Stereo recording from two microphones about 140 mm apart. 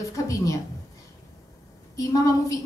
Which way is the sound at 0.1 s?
25° left (ahead or behind).